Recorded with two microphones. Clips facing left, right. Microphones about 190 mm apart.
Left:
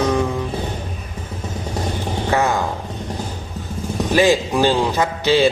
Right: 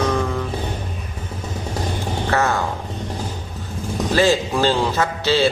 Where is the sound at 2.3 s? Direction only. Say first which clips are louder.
Left 2 dB; 15° left (ahead or behind).